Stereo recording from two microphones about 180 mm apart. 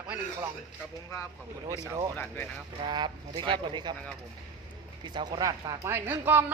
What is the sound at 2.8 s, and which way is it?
Speech, 25° right (ahead or behind).